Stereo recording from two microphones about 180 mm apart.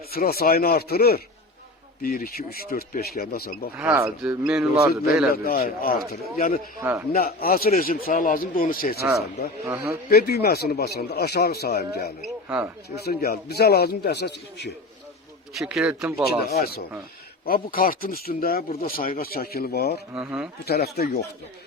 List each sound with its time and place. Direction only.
0.1 s speech: 55° left (ahead or behind)
3.8 s speech: 10° right (ahead or behind)
5.3 s a man's voice: 55° left (ahead or behind)
9.0 s speech: 15° right (ahead or behind)
10.1 s speech: 60° left (ahead or behind)
12.5 s speech: 10° right (ahead or behind)
13.1 s speech: 55° left (ahead or behind)
15.5 s speech: 5° right (ahead or behind)
16.5 s a man's voice: 60° left (ahead or behind)
20.1 s speech: 5° right (ahead or behind)
20.7 s speech: 60° left (ahead or behind)